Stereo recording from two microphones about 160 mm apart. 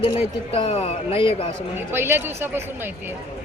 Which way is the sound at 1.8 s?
15° right (ahead or behind).